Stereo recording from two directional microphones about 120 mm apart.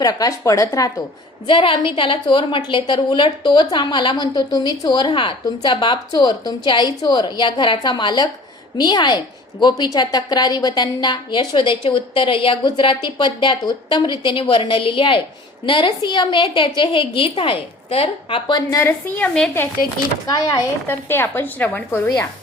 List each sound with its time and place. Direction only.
0.0 s speech: 30° left (ahead or behind)
1.5 s a woman's voice: 45° left (ahead or behind)
18.7 s speech: 20° left (ahead or behind)
20.8 s a woman's voice: 20° left (ahead or behind)